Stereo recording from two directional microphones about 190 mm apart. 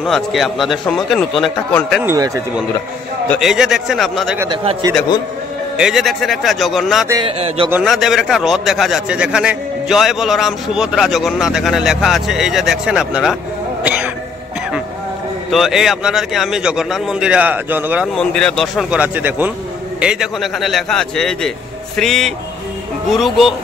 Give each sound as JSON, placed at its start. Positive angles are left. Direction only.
{"t": 0.0, "sound": "a man's voice", "side_deg": 0}
{"t": 2.0, "sound": "a man's voice", "side_deg": -15}
{"t": 3.3, "sound": "a man's voice", "side_deg": 0}
{"t": 5.8, "sound": "a man's voice", "side_deg": 0}
{"t": 7.1, "sound": "speech", "side_deg": -25}
{"t": 7.7, "sound": "a man's voice", "side_deg": 0}
{"t": 15.5, "sound": "a man's voice", "side_deg": 0}
{"t": 18.0, "sound": "a man's voice", "side_deg": 5}